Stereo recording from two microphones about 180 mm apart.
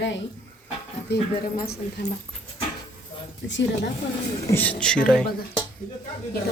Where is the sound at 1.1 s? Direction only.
65° left (ahead or behind).